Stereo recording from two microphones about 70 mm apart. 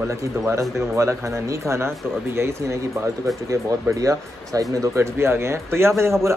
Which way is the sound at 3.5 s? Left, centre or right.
Right.